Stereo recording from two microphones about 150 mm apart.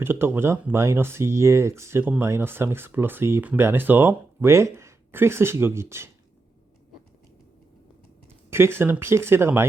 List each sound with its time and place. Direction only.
0.0 s speech: 15° right (ahead or behind)
8.4 s speech: 15° right (ahead or behind)